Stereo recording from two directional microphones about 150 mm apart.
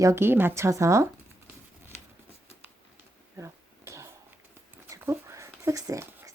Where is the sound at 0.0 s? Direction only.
15° right (ahead or behind).